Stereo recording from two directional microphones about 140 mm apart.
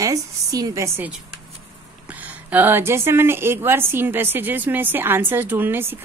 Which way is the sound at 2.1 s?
10° right (ahead or behind).